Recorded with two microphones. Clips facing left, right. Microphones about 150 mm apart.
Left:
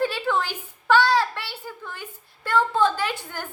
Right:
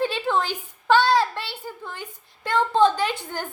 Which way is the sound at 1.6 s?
15° right (ahead or behind).